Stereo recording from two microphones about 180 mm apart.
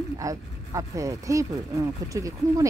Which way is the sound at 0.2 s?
20° right (ahead or behind).